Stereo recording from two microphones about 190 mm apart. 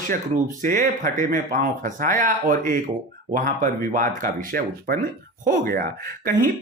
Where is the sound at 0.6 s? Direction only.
45° right (ahead or behind).